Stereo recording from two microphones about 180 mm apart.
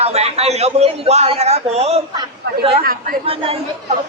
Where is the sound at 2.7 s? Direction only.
50° right (ahead or behind).